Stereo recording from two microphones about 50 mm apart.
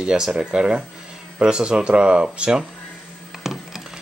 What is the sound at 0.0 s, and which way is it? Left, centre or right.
Speech, centre.